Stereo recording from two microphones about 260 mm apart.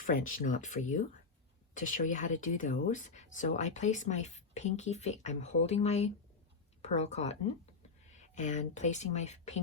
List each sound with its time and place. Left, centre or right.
0.0 s speech: left
8.4 s speech: left